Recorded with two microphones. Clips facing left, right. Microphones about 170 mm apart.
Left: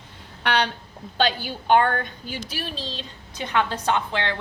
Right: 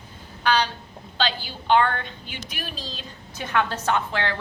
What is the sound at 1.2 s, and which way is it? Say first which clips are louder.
A woman's voice: left 4 dB; 50° left (ahead or behind).